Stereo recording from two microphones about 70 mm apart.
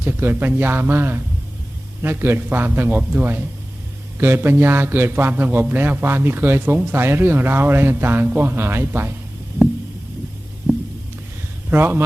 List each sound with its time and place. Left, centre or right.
0.0 s a man's voice: right
10.7 s a sound: centre
11.7 s a man's voice: right